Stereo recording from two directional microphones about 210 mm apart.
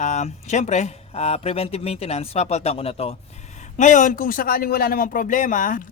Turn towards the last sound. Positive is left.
turn(degrees=40)  # may be behind; listen again after turning